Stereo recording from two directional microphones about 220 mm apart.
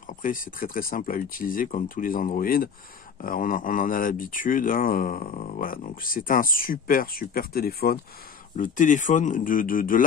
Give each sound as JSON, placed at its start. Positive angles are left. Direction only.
{"t": 0.0, "sound": "speech", "side_deg": 40}